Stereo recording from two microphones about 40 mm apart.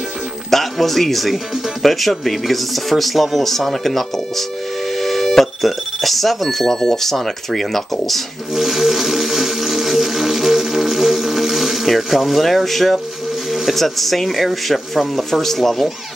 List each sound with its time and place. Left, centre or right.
0.5 s speech: centre
8.5 s a sound: centre
13.5 s speech: centre